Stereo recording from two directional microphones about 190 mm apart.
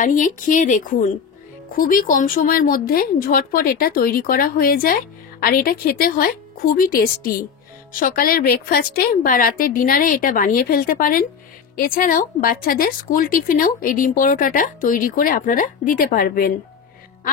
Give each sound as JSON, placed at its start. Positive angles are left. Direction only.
{"t": 0.0, "sound": "speech", "side_deg": 45}